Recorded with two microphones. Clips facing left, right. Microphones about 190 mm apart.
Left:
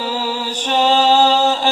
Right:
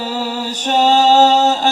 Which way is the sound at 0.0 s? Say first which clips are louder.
Right 1 dB; 45° right (ahead or behind).